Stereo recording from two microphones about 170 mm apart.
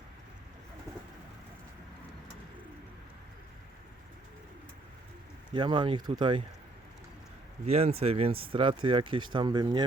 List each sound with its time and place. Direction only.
5.5 s speech: 30° right (ahead or behind)
7.6 s speech: 35° right (ahead or behind)